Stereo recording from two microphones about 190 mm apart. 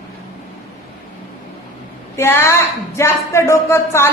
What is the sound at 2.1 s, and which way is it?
A woman's voice, 10° left (ahead or behind).